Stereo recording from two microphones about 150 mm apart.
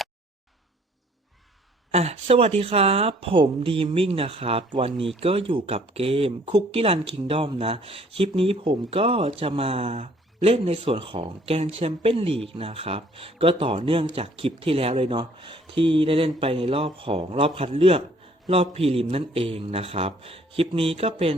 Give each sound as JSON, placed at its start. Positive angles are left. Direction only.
{"t": 1.9, "sound": "speech", "side_deg": -45}